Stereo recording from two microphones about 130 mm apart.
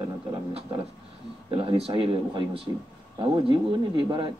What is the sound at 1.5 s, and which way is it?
A man's voice, 40° right (ahead or behind).